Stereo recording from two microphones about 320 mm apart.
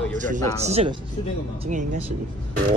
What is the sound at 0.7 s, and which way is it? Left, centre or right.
Speech, centre.